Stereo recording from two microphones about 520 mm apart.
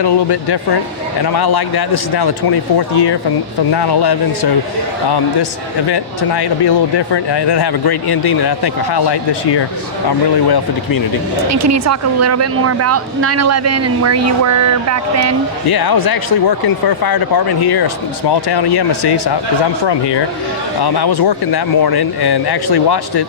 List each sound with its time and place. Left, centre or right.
0.0 s speech: left
11.4 s a woman's voice: right
15.6 s speech: left